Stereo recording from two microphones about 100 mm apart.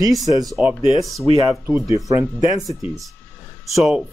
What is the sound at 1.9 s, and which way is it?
Speech, 35° right (ahead or behind).